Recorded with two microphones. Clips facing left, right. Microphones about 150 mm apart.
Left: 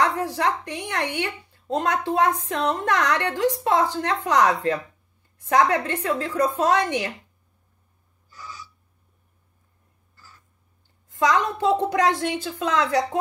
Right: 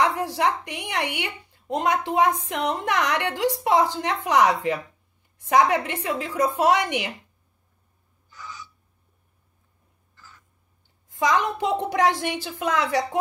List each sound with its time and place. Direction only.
0.0 s a sound: 15° right (ahead or behind)
0.4 s a woman's voice: 20° right (ahead or behind)
11.1 s a child's voice: 15° right (ahead or behind)